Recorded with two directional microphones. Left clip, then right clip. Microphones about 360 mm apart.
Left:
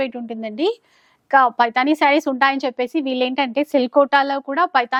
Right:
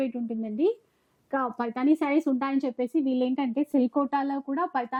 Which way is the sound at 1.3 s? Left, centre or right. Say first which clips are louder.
Left 15 dB; centre.